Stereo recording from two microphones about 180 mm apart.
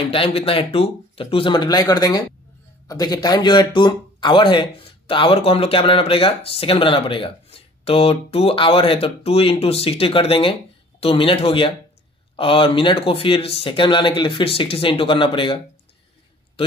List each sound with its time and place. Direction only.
0.1 s speech: 30° left (ahead or behind)